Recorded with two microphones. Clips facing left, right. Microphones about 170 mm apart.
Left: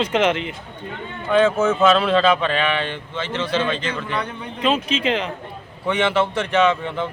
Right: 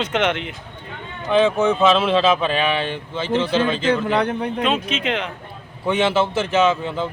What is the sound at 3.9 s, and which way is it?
Speech, 70° right (ahead or behind).